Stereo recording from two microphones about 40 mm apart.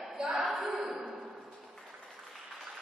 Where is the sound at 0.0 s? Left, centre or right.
Centre.